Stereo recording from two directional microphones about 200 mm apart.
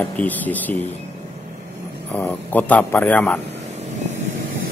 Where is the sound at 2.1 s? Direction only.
10° left (ahead or behind).